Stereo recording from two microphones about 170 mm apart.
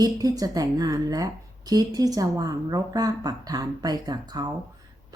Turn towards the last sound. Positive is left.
turn(degrees=-25)  # may be behind; listen again after turning